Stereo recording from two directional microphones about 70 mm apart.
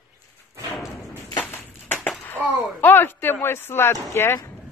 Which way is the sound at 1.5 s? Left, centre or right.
Left.